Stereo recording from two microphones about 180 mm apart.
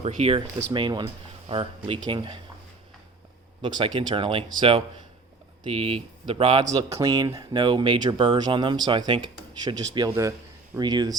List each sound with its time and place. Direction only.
0.0 s speech: 35° right (ahead or behind)
3.6 s speech: 25° right (ahead or behind)
5.6 s speech: 30° right (ahead or behind)